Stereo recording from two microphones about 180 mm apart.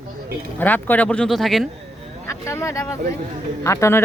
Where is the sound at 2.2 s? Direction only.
15° left (ahead or behind).